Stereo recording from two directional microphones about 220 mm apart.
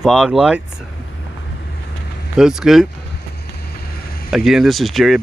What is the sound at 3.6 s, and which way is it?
Vehicle, 45° left (ahead or behind).